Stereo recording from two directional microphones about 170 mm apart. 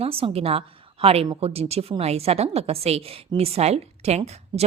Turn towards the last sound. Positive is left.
turn(degrees=-40)  # may be behind; listen again after turning